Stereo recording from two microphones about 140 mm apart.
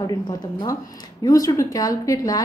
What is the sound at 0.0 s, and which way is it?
Speech, 30° left (ahead or behind).